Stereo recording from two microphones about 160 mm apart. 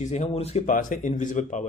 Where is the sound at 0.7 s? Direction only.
55° left (ahead or behind).